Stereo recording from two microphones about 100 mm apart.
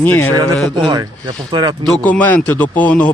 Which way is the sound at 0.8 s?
50° right (ahead or behind).